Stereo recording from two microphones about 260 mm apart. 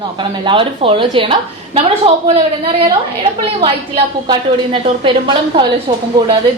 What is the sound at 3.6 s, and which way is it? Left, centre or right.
A woman's voice, right.